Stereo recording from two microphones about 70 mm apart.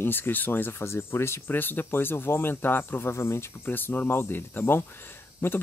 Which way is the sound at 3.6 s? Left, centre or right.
Left.